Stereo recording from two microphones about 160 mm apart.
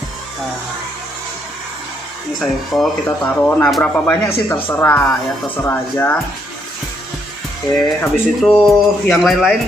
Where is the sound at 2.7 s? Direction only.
Centre (ahead or behind).